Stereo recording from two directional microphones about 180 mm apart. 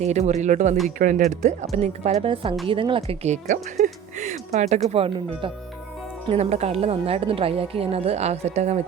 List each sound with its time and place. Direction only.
0.0 s speech: 40° right (ahead or behind)